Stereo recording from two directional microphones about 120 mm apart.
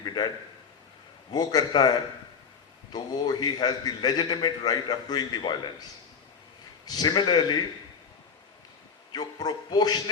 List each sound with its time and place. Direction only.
0.0 s a sound: 35° left (ahead or behind)
1.3 s a man's voice: 35° left (ahead or behind)
6.8 s a man's voice: 35° left (ahead or behind)
9.1 s a man's voice: 35° left (ahead or behind)